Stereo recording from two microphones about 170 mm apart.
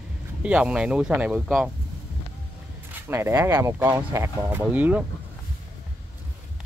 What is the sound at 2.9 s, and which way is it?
Speech, 15° right (ahead or behind).